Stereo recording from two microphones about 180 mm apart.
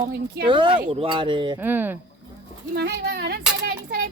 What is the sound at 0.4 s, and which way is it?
Speech, 25° right (ahead or behind).